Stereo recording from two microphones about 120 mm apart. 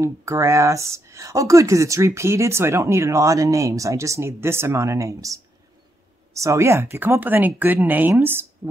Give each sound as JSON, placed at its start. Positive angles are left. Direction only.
{"t": 0.0, "sound": "speech", "side_deg": -25}